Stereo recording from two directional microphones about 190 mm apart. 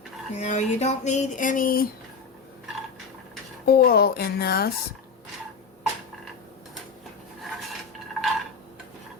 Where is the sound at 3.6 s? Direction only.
55° left (ahead or behind).